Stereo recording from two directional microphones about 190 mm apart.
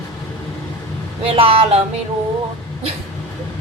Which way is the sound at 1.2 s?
30° right (ahead or behind).